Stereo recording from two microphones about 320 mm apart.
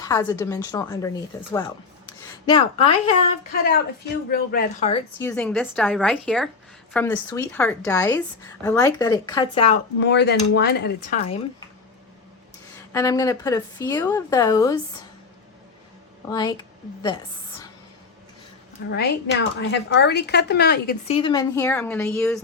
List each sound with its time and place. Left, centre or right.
0.0 s a woman's voice: centre
2.5 s a woman's voice: centre
3.5 s speech: left
5.2 s a woman's voice: centre
10.0 s speech: left
12.9 s a woman's voice: centre
16.3 s a woman's voice: centre
18.9 s speech: left
21.2 s a woman's voice: centre